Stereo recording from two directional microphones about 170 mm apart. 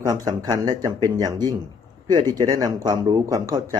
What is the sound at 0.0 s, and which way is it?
Speech, 20° right (ahead or behind).